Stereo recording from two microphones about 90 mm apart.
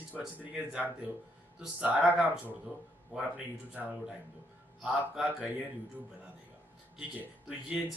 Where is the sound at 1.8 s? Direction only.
15° right (ahead or behind).